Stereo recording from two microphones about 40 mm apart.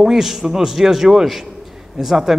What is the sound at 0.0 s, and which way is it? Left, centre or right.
A man's voice, centre.